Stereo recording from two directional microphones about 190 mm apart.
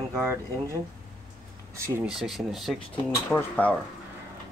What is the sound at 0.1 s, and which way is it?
Speech, 15° right (ahead or behind).